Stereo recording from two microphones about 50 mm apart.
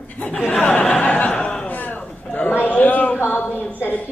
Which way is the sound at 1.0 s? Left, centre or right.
Left.